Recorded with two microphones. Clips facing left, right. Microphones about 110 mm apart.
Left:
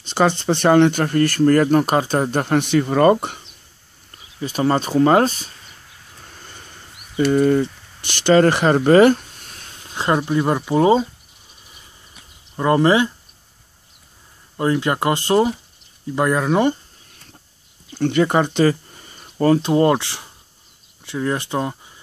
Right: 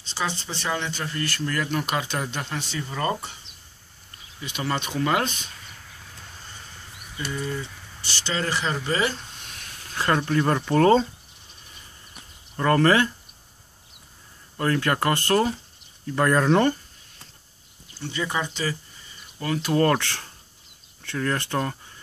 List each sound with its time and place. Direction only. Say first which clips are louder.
0.0 s speech: left 12 dB; 60° left (ahead or behind)
4.4 s speech: left 9 dB; 35° left (ahead or behind)
7.2 s speech: left 15 dB; 65° left (ahead or behind)
9.5 s a sound: left 1 dB; 35° left (ahead or behind)
9.8 s speech: left 4 dB; 20° left (ahead or behind)
12.5 s speech: left 4 dB; 15° left (ahead or behind)
14.6 s speech: left 4 dB; 20° left (ahead or behind)
17.9 s speech: left 12 dB; 60° left (ahead or behind); by 19.6 s 40° left (ahead or behind)
19.6 s speech: left 5 dB; 20° left (ahead or behind)